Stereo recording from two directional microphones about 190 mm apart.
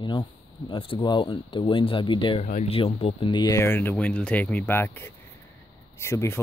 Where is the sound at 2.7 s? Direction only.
30° left (ahead or behind).